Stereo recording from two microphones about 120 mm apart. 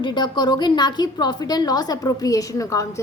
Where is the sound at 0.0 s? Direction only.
40° left (ahead or behind).